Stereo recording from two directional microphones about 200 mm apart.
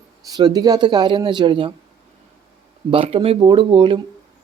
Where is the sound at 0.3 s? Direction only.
20° right (ahead or behind).